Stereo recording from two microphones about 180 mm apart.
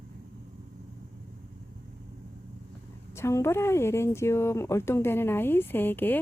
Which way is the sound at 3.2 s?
15° left (ahead or behind).